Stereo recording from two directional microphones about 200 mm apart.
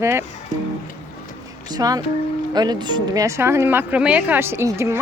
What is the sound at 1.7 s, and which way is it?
A woman's voice, 20° right (ahead or behind).